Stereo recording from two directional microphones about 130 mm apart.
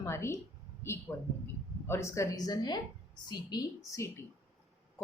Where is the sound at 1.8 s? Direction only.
20° left (ahead or behind).